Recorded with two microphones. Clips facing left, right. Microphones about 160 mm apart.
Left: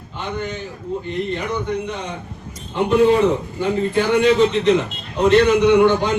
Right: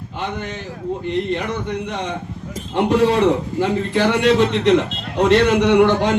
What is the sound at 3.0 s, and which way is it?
A man's voice, 80° right.